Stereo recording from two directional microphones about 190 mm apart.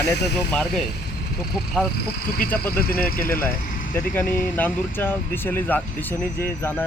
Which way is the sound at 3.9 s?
10° left (ahead or behind).